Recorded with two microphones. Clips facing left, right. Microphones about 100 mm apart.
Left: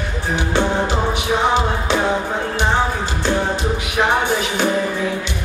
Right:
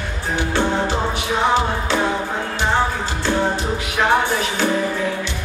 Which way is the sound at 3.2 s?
20° left (ahead or behind).